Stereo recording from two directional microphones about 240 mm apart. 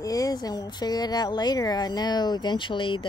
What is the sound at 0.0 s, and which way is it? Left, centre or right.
Speech, centre.